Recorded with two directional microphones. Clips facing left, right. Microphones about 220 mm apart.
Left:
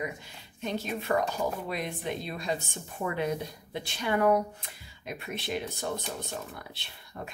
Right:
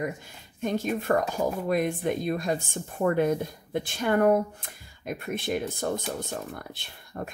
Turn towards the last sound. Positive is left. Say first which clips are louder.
# right 5 dB
turn(degrees=-50)  # may be behind; listen again after turning